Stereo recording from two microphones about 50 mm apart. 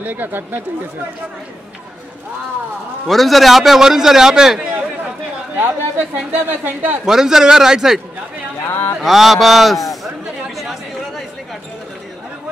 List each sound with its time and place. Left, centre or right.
0.0 s speech: right
3.1 s a man's voice: centre
5.6 s speech: right
7.1 s a man's voice: centre
8.6 s a sound: left
9.0 s a man's voice: centre
10.6 s chatter: centre